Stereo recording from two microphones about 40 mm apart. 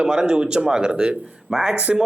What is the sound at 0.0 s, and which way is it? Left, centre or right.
Speech, right.